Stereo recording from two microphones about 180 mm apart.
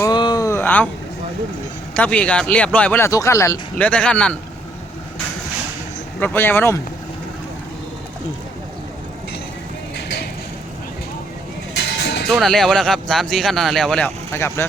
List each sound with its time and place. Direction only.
0.0 s a sound: 25° left (ahead or behind)
2.0 s speech: 5° left (ahead or behind)
6.1 s speech: 10° left (ahead or behind)
11.8 s music: 70° left (ahead or behind)
12.3 s speech: centre (ahead or behind)